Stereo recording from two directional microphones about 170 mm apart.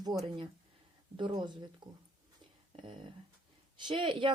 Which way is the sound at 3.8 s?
30° right (ahead or behind).